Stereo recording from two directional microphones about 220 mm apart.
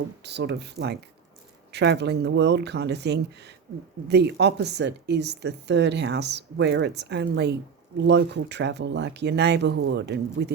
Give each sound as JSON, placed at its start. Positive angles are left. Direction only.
{"t": 0.2, "sound": "speech", "side_deg": -50}